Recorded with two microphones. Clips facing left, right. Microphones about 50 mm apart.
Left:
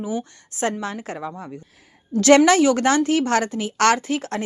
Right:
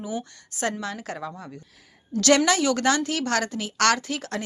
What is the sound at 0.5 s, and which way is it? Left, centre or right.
A woman's voice, left.